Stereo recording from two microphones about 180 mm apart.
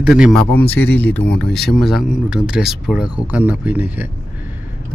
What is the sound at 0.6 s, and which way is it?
Speech, 10° left (ahead or behind).